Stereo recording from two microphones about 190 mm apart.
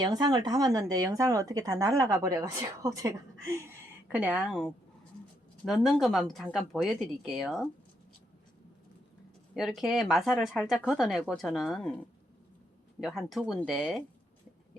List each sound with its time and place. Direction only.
0.0 s speech: 20° right (ahead or behind); by 7.7 s centre (ahead or behind)
9.6 s speech: centre (ahead or behind)
13.0 s speech: centre (ahead or behind)